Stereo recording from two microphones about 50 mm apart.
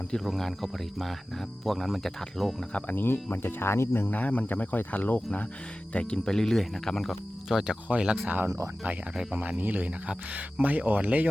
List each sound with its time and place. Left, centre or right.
0.3 s speech: centre
2.9 s speech: left
4.1 s speech: left
5.9 s speech: left
6.3 s speech: centre
7.4 s speech: centre
7.9 s speech: right
8.4 s speech: right
9.3 s speech: right